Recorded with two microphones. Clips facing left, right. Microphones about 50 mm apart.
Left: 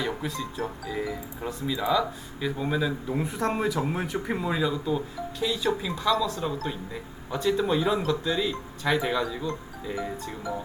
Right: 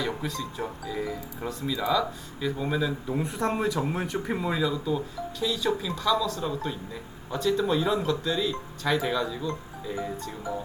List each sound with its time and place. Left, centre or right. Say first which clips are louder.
0.0 s speech: even; centre